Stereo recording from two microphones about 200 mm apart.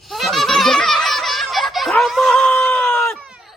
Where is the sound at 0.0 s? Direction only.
Centre (ahead or behind).